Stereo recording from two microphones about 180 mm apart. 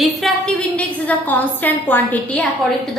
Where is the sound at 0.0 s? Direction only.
5° left (ahead or behind).